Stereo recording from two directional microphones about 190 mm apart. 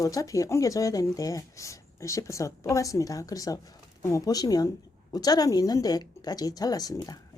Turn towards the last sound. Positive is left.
turn(degrees=20)  # may be behind; listen again after turning